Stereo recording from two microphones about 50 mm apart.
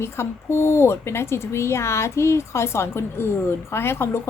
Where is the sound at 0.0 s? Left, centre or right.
Left.